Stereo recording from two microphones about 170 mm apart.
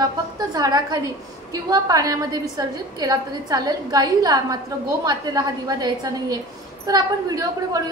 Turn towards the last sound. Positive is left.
turn(degrees=-20)  # may be behind; listen again after turning